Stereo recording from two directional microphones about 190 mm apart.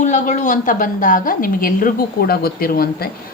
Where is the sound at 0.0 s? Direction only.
40° left (ahead or behind).